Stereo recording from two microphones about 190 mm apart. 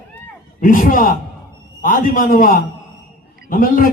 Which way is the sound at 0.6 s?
45° left (ahead or behind).